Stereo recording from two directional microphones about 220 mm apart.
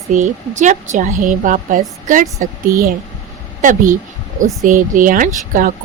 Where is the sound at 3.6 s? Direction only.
35° right (ahead or behind).